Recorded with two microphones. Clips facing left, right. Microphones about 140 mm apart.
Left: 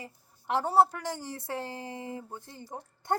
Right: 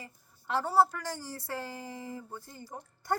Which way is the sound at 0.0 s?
20° left (ahead or behind).